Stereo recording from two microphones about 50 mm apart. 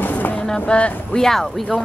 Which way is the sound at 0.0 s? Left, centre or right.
Left.